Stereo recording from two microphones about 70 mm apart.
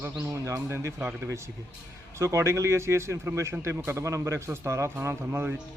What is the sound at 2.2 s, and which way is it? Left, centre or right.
A man's voice, right.